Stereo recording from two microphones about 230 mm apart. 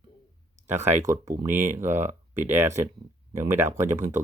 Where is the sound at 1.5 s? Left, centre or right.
Right.